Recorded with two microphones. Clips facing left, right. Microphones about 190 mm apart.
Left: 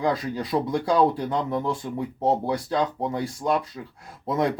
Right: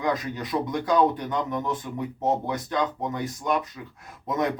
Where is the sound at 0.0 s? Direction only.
30° left (ahead or behind).